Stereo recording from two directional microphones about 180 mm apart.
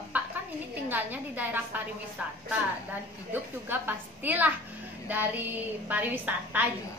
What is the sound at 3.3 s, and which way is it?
A woman's voice, 10° right (ahead or behind).